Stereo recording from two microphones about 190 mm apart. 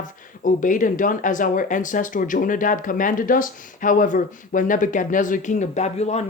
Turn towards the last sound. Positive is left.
turn(degrees=35)  # may be behind; listen again after turning